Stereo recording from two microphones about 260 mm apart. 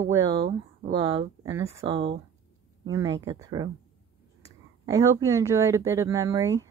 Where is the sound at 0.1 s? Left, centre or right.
Centre.